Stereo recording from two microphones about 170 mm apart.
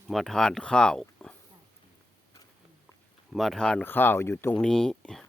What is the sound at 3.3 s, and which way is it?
Speech, centre (ahead or behind).